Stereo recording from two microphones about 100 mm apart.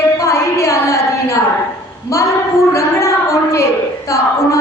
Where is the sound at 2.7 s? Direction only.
30° left (ahead or behind).